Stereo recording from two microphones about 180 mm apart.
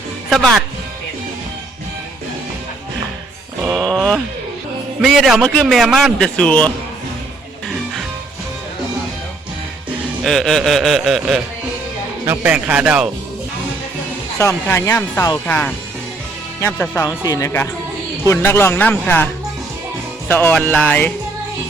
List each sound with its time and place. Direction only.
0.3 s speech: centre (ahead or behind)
3.7 s a sound: 5° left (ahead or behind)
4.9 s a man's voice: centre (ahead or behind)
10.2 s a man's voice: centre (ahead or behind)
12.2 s speech: 10° right (ahead or behind)
14.3 s speech: 15° left (ahead or behind)
16.7 s a man's voice: 5° left (ahead or behind)
17.0 s speech: 20° left (ahead or behind)